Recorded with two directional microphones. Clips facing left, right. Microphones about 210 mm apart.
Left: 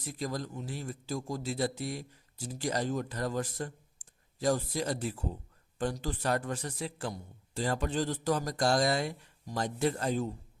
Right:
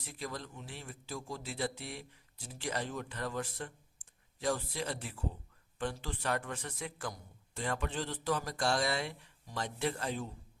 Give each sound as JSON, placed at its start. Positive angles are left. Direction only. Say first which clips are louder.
{"t": 0.0, "sound": "a man's voice", "louder": "left 6 dB", "side_deg": 40}